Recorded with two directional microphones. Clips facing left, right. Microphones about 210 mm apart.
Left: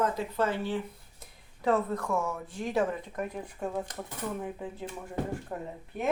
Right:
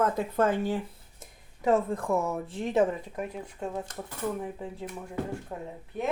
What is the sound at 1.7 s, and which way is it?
Speech, 30° right (ahead or behind).